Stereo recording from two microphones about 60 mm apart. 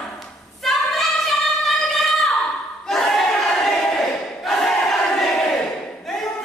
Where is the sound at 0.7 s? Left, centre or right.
Centre.